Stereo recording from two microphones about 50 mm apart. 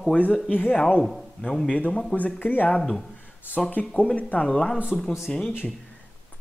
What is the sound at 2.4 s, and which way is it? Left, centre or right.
Speech, left.